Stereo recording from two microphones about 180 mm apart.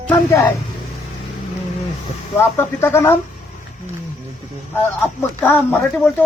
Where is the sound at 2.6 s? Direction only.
15° left (ahead or behind).